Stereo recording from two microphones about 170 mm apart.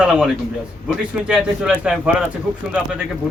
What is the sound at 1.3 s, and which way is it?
Speech, 5° right (ahead or behind).